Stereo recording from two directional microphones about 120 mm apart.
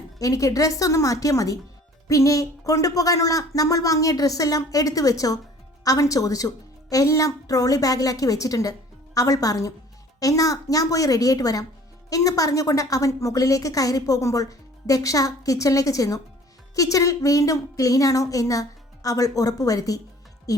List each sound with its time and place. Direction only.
0.2 s a woman's voice: 30° left (ahead or behind)
20.5 s music: 30° left (ahead or behind)